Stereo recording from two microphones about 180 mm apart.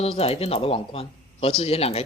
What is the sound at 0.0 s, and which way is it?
Speech, 35° left (ahead or behind).